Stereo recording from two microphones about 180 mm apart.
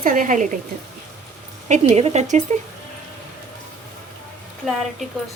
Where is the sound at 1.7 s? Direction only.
35° right (ahead or behind).